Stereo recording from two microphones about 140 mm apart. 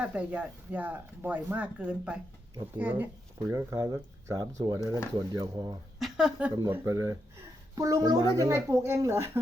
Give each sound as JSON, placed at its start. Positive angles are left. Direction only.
{"t": 0.0, "sound": "speech", "side_deg": -10}
{"t": 3.5, "sound": "speech", "side_deg": -20}
{"t": 4.8, "sound": "speech", "side_deg": 20}
{"t": 5.1, "sound": "speech", "side_deg": -30}
{"t": 6.0, "sound": "speech", "side_deg": -5}
{"t": 6.7, "sound": "speech", "side_deg": -25}